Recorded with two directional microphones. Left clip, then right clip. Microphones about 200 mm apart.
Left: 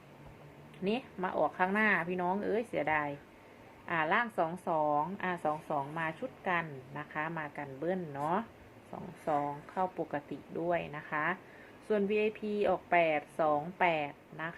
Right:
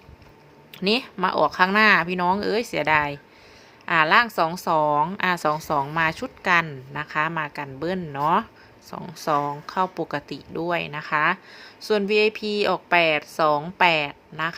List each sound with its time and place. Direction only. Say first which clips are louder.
0.9 s a woman's voice: right 13 dB; 55° right (ahead or behind)
8.9 s a woman's voice: right 10 dB; 65° right (ahead or behind)